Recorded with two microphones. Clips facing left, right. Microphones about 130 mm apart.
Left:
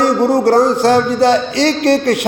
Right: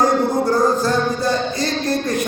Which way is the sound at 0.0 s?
85° left.